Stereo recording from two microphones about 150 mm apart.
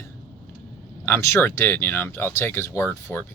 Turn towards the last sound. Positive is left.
turn(degrees=15)  # may be behind; listen again after turning